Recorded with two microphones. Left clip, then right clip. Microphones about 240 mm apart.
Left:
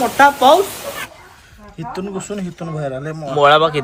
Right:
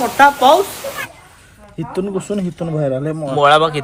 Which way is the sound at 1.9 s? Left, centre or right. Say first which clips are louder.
Right 6 dB; centre.